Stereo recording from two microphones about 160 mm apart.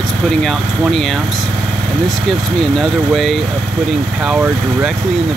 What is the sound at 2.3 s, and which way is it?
Speech, centre (ahead or behind).